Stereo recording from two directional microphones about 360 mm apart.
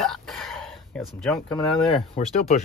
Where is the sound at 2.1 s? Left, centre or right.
Centre.